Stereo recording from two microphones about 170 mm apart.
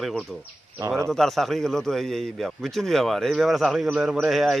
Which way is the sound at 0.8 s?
15° right (ahead or behind).